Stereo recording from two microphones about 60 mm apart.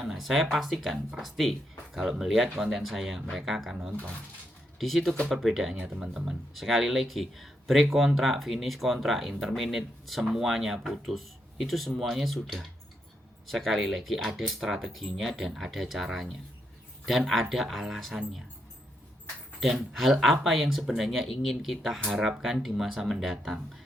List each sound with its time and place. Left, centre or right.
0.0 s speech: centre
4.8 s speech: centre
5.8 s speech: centre
6.5 s speech: centre
19.5 s speech: centre